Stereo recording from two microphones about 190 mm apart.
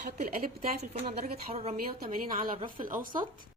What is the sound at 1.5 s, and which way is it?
A woman's voice, 35° right (ahead or behind).